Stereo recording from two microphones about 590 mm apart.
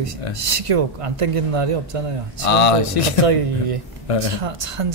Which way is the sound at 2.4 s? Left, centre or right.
Left.